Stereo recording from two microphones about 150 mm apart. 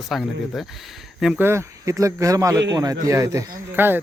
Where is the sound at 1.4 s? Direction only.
15° right (ahead or behind).